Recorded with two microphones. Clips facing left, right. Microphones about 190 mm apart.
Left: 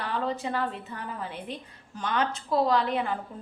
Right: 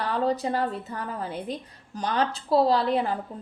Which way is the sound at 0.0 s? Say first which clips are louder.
Right 5 dB; 35° right (ahead or behind).